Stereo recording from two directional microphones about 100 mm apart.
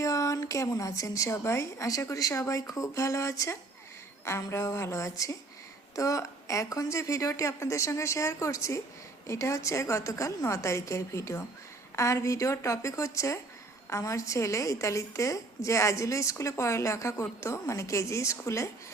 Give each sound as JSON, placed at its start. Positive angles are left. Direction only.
{"t": 0.0, "sound": "a woman's voice", "side_deg": 30}
{"t": 4.3, "sound": "a sound", "side_deg": 30}
{"t": 6.0, "sound": "a woman's voice", "side_deg": 30}